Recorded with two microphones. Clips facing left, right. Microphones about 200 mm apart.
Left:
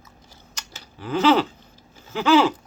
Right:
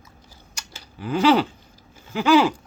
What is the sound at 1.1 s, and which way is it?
Speech, 15° right (ahead or behind).